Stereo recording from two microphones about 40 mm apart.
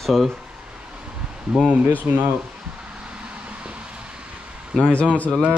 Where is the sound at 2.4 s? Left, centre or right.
Right.